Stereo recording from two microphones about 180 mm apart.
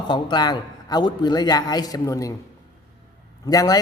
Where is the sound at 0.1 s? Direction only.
25° left (ahead or behind).